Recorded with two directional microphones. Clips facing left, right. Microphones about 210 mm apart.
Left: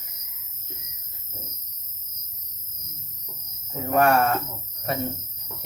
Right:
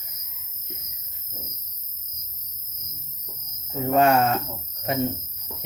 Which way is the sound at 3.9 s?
20° right (ahead or behind).